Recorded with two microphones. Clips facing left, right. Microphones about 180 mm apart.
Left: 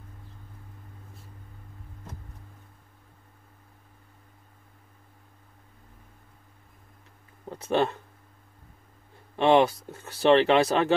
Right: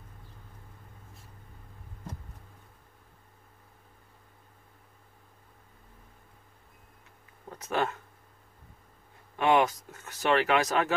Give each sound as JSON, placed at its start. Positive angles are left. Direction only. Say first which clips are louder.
{"t": 7.4, "sound": "speech", "louder": "left 5 dB", "side_deg": 30}
{"t": 9.4, "sound": "speech", "louder": "left 4 dB", "side_deg": 30}